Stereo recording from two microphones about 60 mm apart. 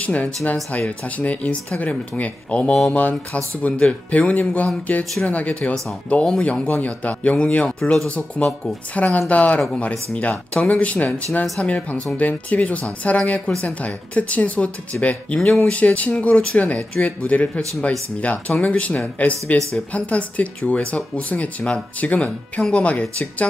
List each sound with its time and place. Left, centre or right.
0.0 s speech: left
18.6 s speech: left